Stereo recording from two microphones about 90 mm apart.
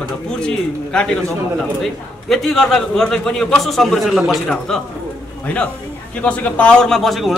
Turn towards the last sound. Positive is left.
turn(degrees=0)  # may be behind; listen again after turning